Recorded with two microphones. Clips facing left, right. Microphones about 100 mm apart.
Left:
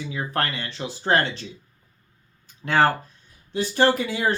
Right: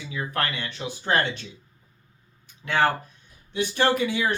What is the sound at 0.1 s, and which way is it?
Speech, 35° left (ahead or behind).